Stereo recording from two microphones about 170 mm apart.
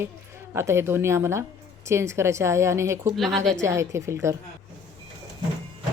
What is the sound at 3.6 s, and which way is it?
Speech, 15° right (ahead or behind).